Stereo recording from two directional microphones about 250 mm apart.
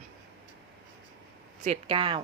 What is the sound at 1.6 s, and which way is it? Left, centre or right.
Speech, right.